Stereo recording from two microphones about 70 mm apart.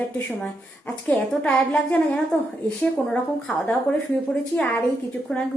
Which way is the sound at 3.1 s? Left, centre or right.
Centre.